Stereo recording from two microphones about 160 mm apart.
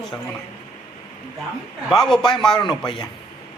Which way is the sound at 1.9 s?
Centre (ahead or behind).